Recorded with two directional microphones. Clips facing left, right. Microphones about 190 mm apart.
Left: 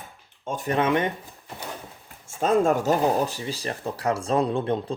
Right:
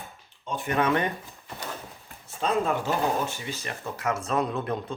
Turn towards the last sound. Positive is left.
turn(degrees=30)  # may be behind; listen again after turning